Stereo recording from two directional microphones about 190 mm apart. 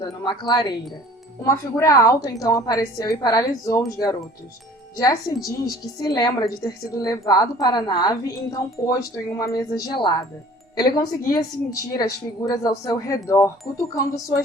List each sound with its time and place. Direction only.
0.0 s speech: 20° left (ahead or behind)